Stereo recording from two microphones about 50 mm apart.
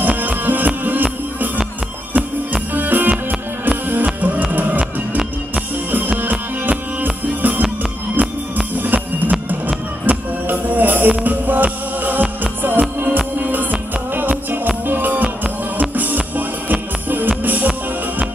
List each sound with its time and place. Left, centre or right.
0.0 s music: right